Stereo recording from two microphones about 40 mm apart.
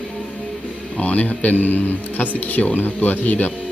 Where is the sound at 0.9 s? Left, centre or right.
Left.